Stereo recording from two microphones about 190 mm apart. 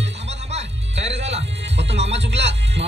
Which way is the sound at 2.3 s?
65° right (ahead or behind).